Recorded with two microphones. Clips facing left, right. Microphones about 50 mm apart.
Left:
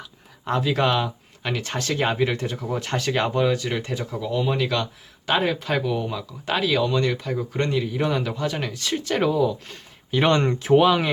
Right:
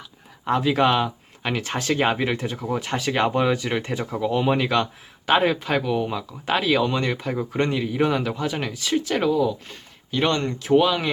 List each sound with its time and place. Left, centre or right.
0.4 s speech: centre
10.1 s speech: centre
10.3 s speech: left
10.7 s speech: centre